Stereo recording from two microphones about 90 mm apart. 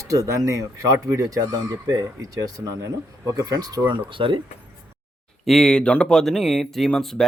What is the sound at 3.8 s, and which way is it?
Speech, 70° right (ahead or behind).